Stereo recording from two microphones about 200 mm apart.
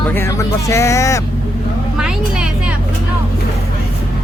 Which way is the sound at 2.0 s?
5° right (ahead or behind).